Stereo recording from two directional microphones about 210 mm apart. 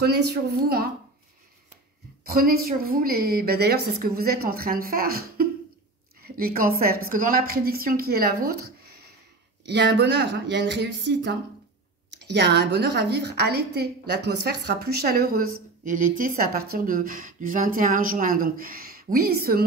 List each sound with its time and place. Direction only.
0.3 s a woman's voice: 50° right (ahead or behind)
2.2 s a woman's voice: 45° right (ahead or behind)